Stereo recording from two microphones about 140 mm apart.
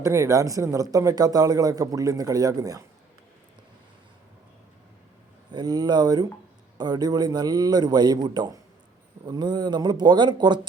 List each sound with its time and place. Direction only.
0.0 s speech: 20° right (ahead or behind)
5.5 s speech: 30° right (ahead or behind)